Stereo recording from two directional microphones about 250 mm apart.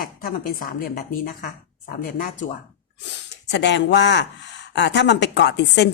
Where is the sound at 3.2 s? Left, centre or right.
Left.